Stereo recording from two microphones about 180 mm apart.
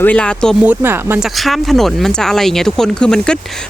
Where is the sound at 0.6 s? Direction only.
10° right (ahead or behind).